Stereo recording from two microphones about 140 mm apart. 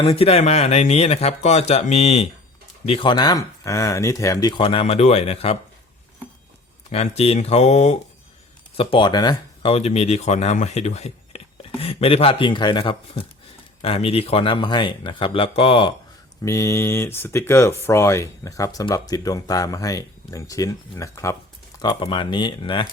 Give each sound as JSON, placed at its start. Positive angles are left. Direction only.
{"t": 0.0, "sound": "speech", "side_deg": 45}
{"t": 6.9, "sound": "speech", "side_deg": 50}
{"t": 8.7, "sound": "speech", "side_deg": 40}
{"t": 9.7, "sound": "speech", "side_deg": 50}
{"t": 16.4, "sound": "speech", "side_deg": 20}